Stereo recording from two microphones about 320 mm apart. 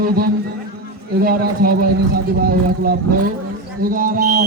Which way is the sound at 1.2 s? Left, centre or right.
Right.